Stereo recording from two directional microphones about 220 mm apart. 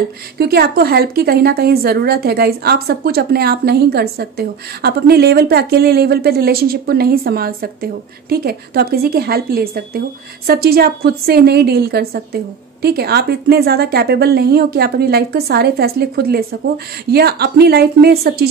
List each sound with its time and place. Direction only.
0.4 s a woman's voice: 45° right (ahead or behind)